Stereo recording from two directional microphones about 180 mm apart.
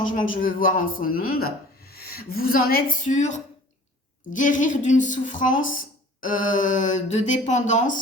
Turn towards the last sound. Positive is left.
turn(degrees=45)  # may be behind; listen again after turning